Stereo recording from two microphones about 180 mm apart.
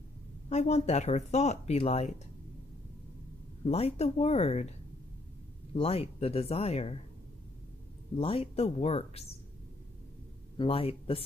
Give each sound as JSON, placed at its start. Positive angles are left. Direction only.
{"t": 0.5, "sound": "speech", "side_deg": 35}
{"t": 3.6, "sound": "speech", "side_deg": 35}
{"t": 5.8, "sound": "speech", "side_deg": 35}
{"t": 8.2, "sound": "speech", "side_deg": 30}
{"t": 10.6, "sound": "speech", "side_deg": 30}